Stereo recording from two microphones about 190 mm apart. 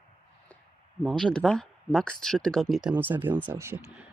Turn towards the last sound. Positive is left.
turn(degrees=-10)  # may be behind; listen again after turning